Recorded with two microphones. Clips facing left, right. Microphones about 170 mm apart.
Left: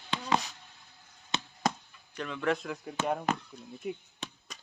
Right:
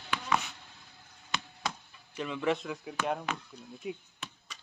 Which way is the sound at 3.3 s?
40° left (ahead or behind).